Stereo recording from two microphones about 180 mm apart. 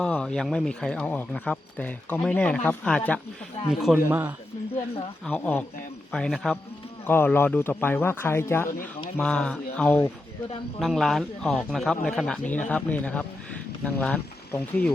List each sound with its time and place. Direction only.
0.0 s a man's voice: 5° left (ahead or behind)
5.2 s speech: 10° left (ahead or behind)